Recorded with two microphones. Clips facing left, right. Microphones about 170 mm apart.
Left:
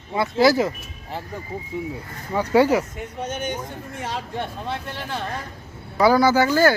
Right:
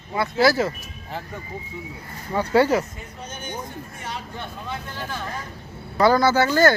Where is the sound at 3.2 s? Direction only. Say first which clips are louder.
Left 9 dB; 75° left (ahead or behind).